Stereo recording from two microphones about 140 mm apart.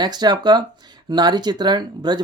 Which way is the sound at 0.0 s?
30° right (ahead or behind).